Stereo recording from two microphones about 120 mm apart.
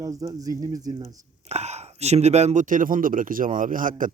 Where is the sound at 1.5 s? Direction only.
65° right (ahead or behind).